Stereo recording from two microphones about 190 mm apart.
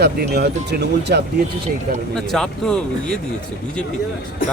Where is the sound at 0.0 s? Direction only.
60° right (ahead or behind).